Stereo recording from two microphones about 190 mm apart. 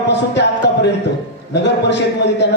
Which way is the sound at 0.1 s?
65° left (ahead or behind).